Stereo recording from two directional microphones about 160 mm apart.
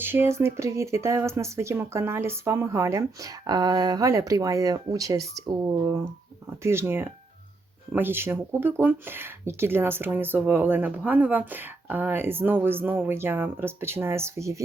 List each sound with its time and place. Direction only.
0.0 s speech: 15° right (ahead or behind)